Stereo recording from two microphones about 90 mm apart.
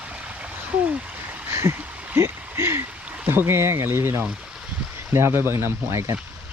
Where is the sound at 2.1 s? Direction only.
30° right (ahead or behind).